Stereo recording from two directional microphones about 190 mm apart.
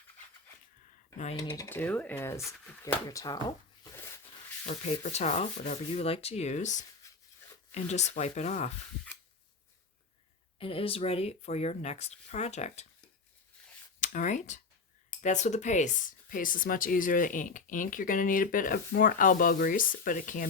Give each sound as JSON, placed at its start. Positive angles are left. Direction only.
{"t": 1.4, "sound": "speech", "side_deg": 15}
{"t": 4.6, "sound": "speech", "side_deg": 35}
{"t": 7.0, "sound": "a sound", "side_deg": 15}
{"t": 7.7, "sound": "speech", "side_deg": 35}
{"t": 10.6, "sound": "speech", "side_deg": 30}
{"t": 14.0, "sound": "speech", "side_deg": 40}